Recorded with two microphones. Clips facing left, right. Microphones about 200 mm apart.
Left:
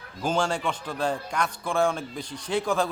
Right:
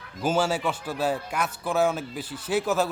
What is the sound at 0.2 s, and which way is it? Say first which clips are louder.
A man's voice: right 2 dB; 5° right (ahead or behind).